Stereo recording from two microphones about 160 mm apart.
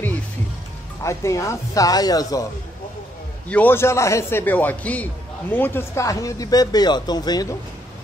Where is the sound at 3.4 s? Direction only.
10° left (ahead or behind).